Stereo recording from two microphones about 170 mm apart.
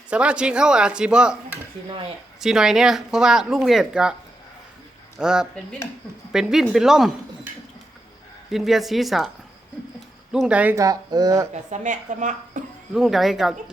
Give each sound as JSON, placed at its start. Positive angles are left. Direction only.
{"t": 0.1, "sound": "speech", "side_deg": -5}
{"t": 2.4, "sound": "speech", "side_deg": 0}
{"t": 5.2, "sound": "speech", "side_deg": -5}
{"t": 8.4, "sound": "speech", "side_deg": 0}
{"t": 10.3, "sound": "speech", "side_deg": -5}
{"t": 10.8, "sound": "speech", "side_deg": -20}
{"t": 11.5, "sound": "speech", "side_deg": -45}
{"t": 12.9, "sound": "speech", "side_deg": 0}